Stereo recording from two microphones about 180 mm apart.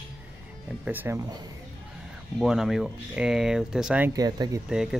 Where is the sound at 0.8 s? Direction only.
10° right (ahead or behind).